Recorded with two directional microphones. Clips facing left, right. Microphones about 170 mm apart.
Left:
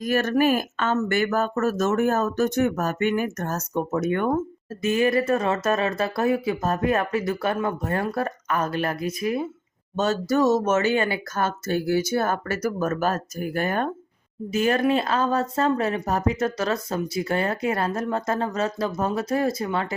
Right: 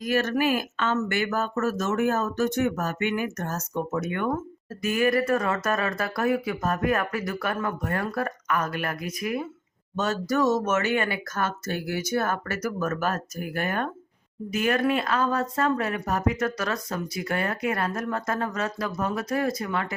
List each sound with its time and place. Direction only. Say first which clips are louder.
0.0 s speech: left 3 dB; 45° left (ahead or behind)
4.8 s speech: left 2 dB; 25° left (ahead or behind)